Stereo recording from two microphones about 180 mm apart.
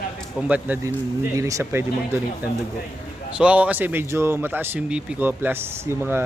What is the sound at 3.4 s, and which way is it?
Speech, 5° right (ahead or behind).